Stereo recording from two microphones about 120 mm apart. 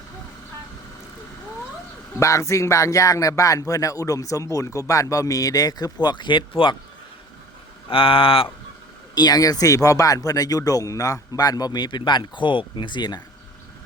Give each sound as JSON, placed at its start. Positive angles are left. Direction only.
{"t": 2.1, "sound": "speech", "side_deg": 25}
{"t": 7.9, "sound": "speech", "side_deg": 50}
{"t": 9.1, "sound": "speech", "side_deg": 35}